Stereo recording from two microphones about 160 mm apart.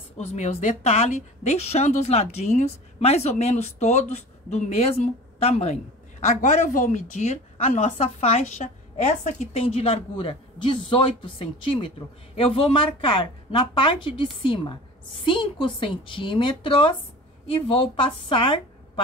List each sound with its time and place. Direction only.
0.2 s a woman's voice: 45° left (ahead or behind)
6.2 s a woman's voice: 55° left (ahead or behind); by 18.6 s 30° left (ahead or behind)